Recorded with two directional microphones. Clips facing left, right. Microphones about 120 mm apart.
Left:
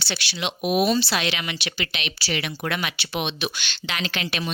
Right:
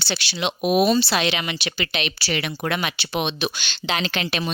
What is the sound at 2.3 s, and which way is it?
Speech, 50° right (ahead or behind).